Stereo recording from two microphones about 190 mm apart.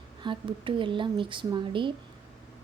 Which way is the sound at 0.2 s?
25° right (ahead or behind).